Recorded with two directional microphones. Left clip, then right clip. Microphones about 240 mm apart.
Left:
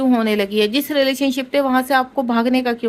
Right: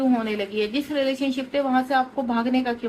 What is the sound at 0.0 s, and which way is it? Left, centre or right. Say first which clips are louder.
Speech: left 6 dB; left.